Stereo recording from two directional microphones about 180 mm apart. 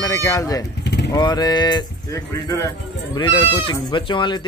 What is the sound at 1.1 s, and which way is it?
Speech, 20° left (ahead or behind).